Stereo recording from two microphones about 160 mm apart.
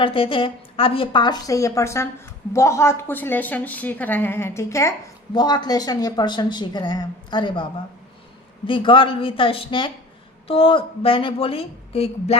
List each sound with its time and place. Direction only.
0.0 s a woman's voice: 35° left (ahead or behind)